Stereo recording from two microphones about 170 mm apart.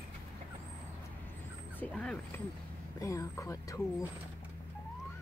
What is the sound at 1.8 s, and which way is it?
Speech, 5° left (ahead or behind).